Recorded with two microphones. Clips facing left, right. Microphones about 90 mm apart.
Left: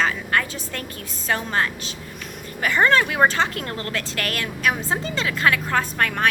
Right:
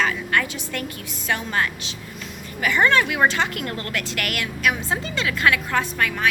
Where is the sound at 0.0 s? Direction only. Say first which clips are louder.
Even; 30° left (ahead or behind).